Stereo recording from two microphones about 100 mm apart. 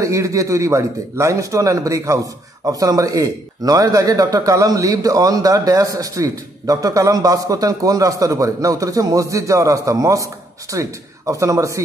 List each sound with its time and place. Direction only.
0.0 s a man's voice: 30° right (ahead or behind)